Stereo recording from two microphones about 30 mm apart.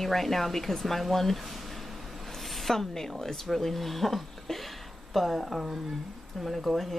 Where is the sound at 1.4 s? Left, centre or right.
Centre.